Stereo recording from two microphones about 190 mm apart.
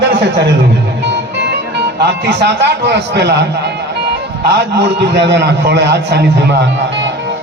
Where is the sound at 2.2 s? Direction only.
60° right (ahead or behind).